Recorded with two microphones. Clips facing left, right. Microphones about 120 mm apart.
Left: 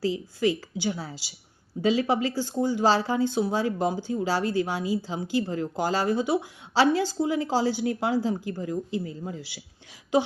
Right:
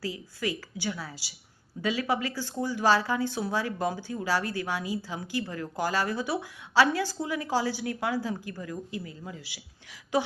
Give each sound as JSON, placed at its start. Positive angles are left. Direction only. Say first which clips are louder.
{"t": 0.0, "sound": "speech", "louder": "left 8 dB", "side_deg": 25}